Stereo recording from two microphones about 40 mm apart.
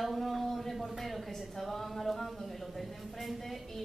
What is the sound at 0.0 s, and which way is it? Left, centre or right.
A woman's voice, centre.